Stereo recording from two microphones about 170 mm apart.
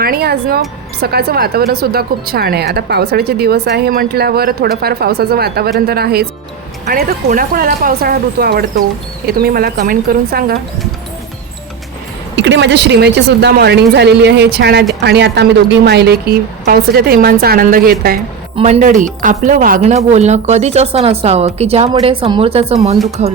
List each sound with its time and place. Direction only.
0.0 s speech: 65° right (ahead or behind)
12.4 s speech: 90° right; by 17.9 s 55° right (ahead or behind)
18.5 s speech: 40° right (ahead or behind)